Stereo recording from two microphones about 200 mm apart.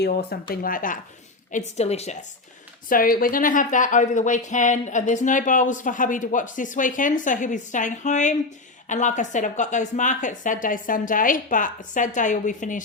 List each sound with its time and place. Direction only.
0.0 s speech: 50° left (ahead or behind)
1.5 s speech: 35° left (ahead or behind)
2.9 s speech: 45° left (ahead or behind)